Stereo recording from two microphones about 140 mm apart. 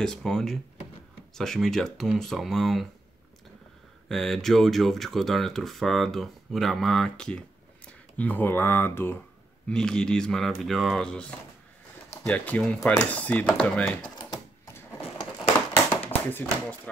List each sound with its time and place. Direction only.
0.0 s speech: 5° left (ahead or behind)
4.1 s speech: centre (ahead or behind)
9.7 s speech: 5° left (ahead or behind)
15.0 s a sound: 40° left (ahead or behind)
16.3 s speech: 10° left (ahead or behind)